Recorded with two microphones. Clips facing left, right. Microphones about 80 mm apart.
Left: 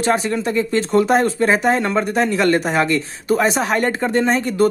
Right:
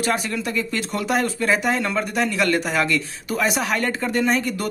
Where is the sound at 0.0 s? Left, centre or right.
Left.